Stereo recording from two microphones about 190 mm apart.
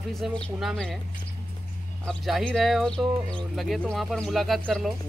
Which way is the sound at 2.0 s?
Centre (ahead or behind).